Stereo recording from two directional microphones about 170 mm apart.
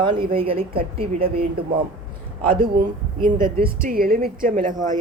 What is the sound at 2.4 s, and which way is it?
Speech, 55° right (ahead or behind).